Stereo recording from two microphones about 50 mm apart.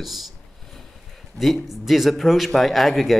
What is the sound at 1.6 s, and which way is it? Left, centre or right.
Speech, centre.